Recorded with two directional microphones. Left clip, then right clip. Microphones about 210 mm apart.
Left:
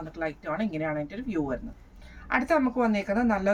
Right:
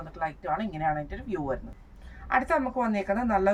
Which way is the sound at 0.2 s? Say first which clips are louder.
Right 1 dB; 15° right (ahead or behind).